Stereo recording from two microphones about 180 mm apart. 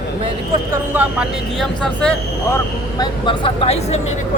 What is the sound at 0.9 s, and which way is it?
Speech, 5° right (ahead or behind).